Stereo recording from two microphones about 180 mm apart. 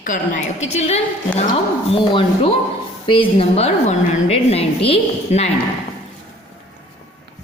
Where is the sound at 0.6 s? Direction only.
40° left (ahead or behind).